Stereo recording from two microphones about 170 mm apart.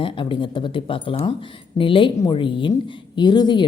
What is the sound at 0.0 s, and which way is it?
Speech, 30° left (ahead or behind).